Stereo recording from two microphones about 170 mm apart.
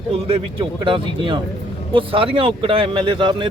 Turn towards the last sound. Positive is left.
turn(degrees=-30)  # may be behind; listen again after turning